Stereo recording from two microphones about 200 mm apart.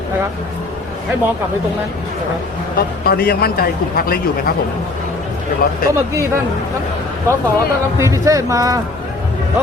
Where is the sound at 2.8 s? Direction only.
50° left (ahead or behind).